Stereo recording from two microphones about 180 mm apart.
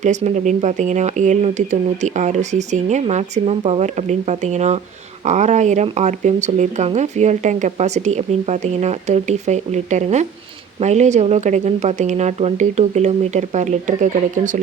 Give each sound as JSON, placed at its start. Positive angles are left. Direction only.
{"t": 0.0, "sound": "speech", "side_deg": -40}